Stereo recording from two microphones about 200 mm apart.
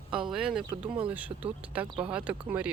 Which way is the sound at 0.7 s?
25° right (ahead or behind).